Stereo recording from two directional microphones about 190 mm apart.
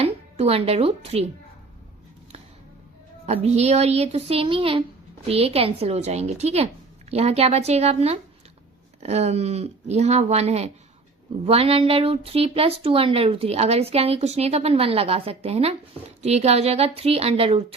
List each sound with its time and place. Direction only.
0.0 s speech: 30° right (ahead or behind)
3.2 s a woman's voice: 35° right (ahead or behind)